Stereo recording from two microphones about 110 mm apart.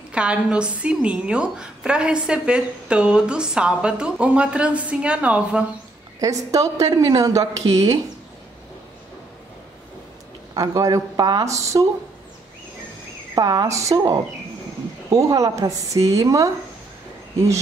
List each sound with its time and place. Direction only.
0.1 s a woman's voice: 10° right (ahead or behind)
6.2 s speech: 30° right (ahead or behind)
10.5 s speech: 35° right (ahead or behind)
13.3 s a woman's voice: 35° right (ahead or behind)